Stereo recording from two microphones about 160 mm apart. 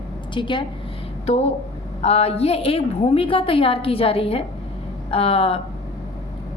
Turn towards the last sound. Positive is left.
turn(degrees=35)  # may be behind; listen again after turning